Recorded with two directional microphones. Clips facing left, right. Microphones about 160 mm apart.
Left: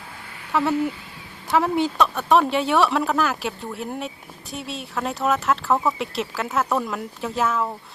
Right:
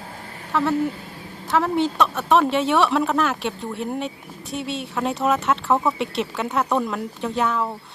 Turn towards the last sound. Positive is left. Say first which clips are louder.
# right 1 dB
turn(degrees=0)  # may be behind; listen again after turning